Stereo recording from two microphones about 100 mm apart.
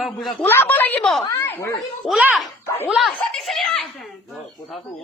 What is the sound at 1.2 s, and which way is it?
Speech, 30° left (ahead or behind).